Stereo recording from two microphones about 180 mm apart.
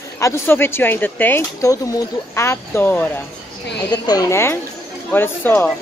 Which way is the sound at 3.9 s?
20° left (ahead or behind).